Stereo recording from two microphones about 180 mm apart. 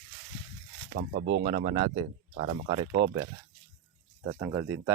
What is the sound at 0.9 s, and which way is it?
Speech, 60° right (ahead or behind).